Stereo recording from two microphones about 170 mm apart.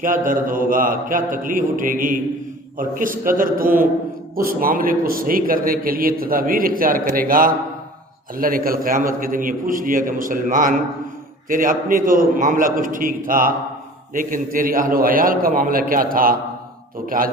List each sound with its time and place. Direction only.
0.0 s a man's voice: 50° right (ahead or behind)